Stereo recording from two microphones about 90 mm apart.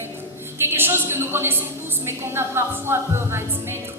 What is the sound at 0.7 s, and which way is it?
A woman's voice, 25° right (ahead or behind).